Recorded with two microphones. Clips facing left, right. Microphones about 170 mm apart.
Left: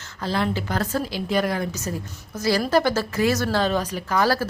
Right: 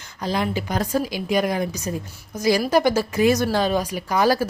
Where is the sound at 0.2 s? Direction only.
15° right (ahead or behind).